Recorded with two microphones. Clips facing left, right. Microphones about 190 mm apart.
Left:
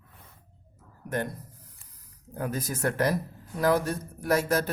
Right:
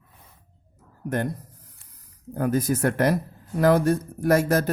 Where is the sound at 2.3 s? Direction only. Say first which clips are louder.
Right 9 dB; 55° right (ahead or behind).